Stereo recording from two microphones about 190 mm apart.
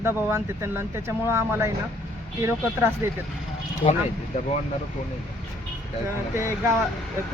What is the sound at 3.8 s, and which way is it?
Speech, 35° left (ahead or behind).